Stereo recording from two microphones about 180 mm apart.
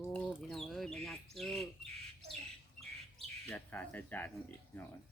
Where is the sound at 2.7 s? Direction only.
Centre (ahead or behind).